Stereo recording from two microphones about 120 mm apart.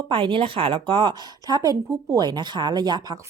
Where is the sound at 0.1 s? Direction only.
45° right (ahead or behind).